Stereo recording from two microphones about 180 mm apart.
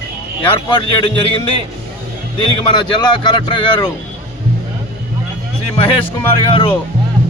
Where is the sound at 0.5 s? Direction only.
25° left (ahead or behind).